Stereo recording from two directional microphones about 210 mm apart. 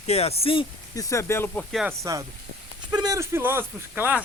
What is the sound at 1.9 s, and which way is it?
Speech, 15° right (ahead or behind).